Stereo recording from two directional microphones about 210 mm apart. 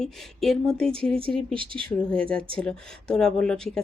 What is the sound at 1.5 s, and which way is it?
Speech, 25° right (ahead or behind).